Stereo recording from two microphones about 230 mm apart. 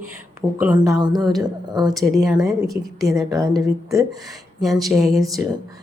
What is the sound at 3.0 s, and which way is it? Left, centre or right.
Speech, centre.